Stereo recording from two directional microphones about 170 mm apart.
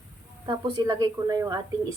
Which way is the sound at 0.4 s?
25° right (ahead or behind).